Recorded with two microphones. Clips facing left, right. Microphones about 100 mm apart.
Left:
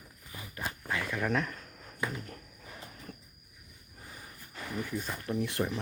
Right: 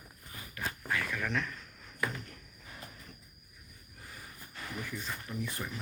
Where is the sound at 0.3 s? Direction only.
25° left (ahead or behind).